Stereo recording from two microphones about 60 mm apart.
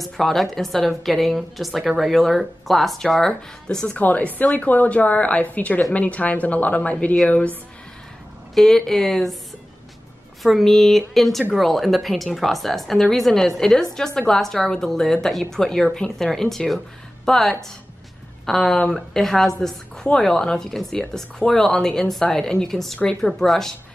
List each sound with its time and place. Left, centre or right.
0.0 s a woman's voice: centre
3.9 s a woman's voice: left
8.5 s speech: centre
10.4 s a woman's voice: centre